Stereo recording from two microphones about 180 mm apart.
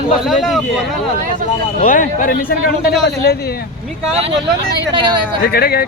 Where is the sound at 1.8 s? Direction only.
50° left (ahead or behind).